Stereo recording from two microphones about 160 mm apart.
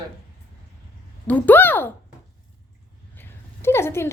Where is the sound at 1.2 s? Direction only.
10° left (ahead or behind).